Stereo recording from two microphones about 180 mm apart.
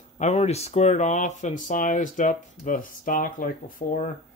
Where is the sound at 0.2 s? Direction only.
35° left (ahead or behind).